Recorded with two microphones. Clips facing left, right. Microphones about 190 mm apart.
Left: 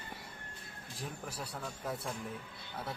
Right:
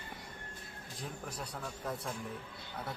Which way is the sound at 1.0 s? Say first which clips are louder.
Even; 5° left (ahead or behind).